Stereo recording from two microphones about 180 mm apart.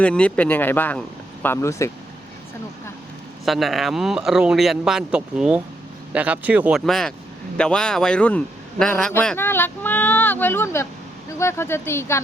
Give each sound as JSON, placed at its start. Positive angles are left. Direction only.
{"t": 0.0, "sound": "a man's voice", "side_deg": 5}
{"t": 3.4, "sound": "a man's voice", "side_deg": 0}